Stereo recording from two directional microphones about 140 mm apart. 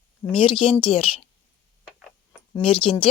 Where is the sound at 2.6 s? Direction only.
10° left (ahead or behind).